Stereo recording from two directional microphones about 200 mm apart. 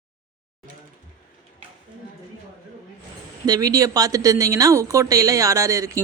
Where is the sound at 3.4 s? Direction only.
20° right (ahead or behind).